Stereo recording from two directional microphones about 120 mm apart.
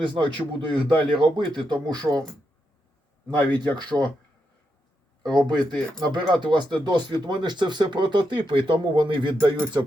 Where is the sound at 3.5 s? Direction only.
35° right (ahead or behind).